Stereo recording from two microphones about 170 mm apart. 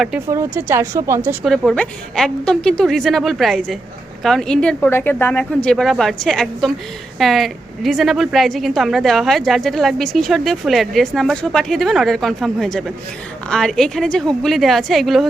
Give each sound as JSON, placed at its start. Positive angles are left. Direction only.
{"t": 0.3, "sound": "a woman's voice", "side_deg": -15}
{"t": 1.5, "sound": "a woman's voice", "side_deg": 5}